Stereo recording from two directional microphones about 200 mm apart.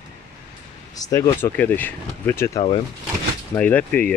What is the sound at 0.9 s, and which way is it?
Speech, 15° left (ahead or behind).